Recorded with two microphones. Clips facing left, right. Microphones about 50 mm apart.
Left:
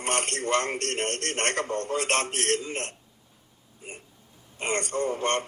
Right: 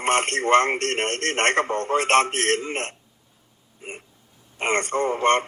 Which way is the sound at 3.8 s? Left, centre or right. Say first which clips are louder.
Right 5 dB; right.